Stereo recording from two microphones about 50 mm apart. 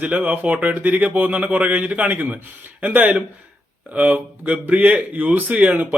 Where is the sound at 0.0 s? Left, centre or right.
Right.